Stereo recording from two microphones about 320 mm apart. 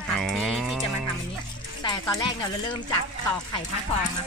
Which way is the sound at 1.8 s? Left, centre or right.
Centre.